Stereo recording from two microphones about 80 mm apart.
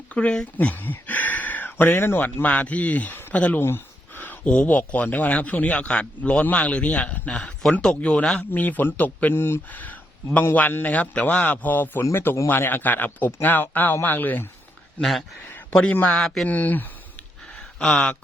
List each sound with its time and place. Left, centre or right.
0.1 s speech: centre
8.5 s speech: left
16.1 s speech: centre
16.5 s speech: left
17.6 s speech: centre